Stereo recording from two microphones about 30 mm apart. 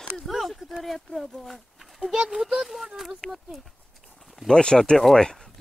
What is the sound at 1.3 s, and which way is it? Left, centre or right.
Speech, centre.